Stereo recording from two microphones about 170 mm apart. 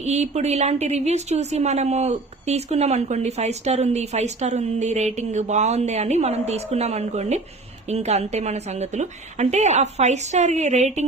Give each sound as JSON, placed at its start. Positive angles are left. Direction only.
{"t": 0.0, "sound": "a woman's voice", "side_deg": -40}